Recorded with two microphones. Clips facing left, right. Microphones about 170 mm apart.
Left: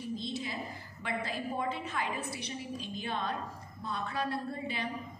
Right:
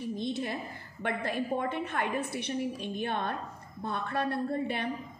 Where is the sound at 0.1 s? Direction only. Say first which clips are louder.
Right 4 dB; 60° right (ahead or behind).